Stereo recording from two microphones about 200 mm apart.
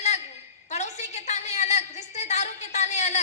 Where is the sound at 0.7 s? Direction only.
35° left (ahead or behind).